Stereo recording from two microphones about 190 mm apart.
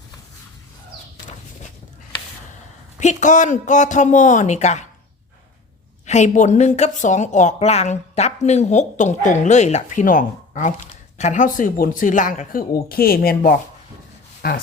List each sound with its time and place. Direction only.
3.0 s a woman's voice: 40° left (ahead or behind)
6.1 s a woman's voice: 40° left (ahead or behind)